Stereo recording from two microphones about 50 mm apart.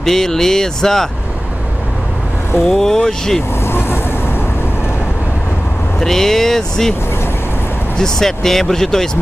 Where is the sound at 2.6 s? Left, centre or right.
Centre.